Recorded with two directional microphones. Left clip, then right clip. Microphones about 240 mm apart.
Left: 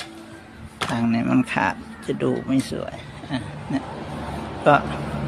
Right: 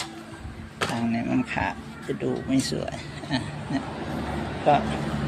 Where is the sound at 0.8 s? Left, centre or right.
Left.